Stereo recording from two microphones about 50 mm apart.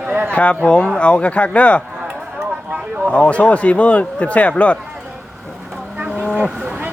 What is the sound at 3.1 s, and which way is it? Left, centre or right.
Speech, left.